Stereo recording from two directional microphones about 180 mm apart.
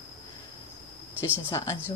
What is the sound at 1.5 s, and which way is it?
Speech, 15° left (ahead or behind).